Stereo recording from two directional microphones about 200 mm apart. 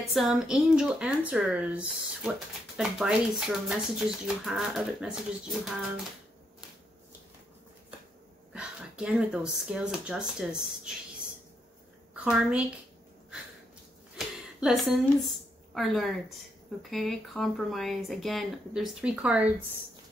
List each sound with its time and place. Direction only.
0.0 s speech: centre (ahead or behind)
8.5 s speech: 5° right (ahead or behind)
12.1 s a woman's voice: 5° right (ahead or behind)
14.1 s a sound: centre (ahead or behind)
15.7 s speech: centre (ahead or behind)